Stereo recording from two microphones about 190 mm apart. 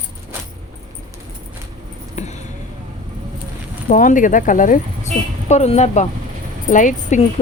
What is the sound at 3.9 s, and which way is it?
A woman's voice, 45° left (ahead or behind).